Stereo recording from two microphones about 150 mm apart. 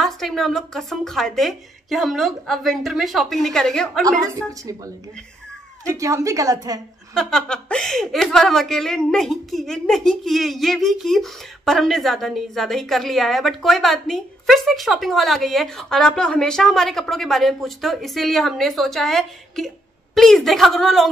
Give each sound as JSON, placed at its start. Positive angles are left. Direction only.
{"t": 0.0, "sound": "a woman's voice", "side_deg": 0}
{"t": 4.3, "sound": "a woman's voice", "side_deg": -20}
{"t": 7.2, "sound": "a woman's voice", "side_deg": 5}